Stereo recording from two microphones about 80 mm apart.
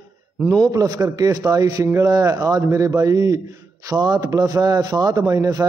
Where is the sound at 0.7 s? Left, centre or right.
Right.